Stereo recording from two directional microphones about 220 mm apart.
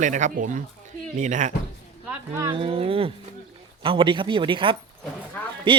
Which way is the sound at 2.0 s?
10° right (ahead or behind).